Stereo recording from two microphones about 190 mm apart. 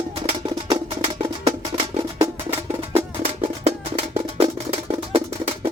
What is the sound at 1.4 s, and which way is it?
Music, 30° right (ahead or behind).